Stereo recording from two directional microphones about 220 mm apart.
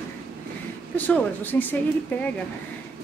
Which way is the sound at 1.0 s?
5° left (ahead or behind).